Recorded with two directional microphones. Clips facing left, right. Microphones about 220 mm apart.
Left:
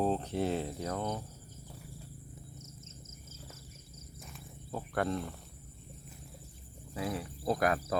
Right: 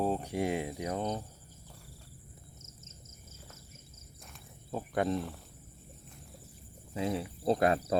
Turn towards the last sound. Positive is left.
turn(degrees=-25)  # may be behind; listen again after turning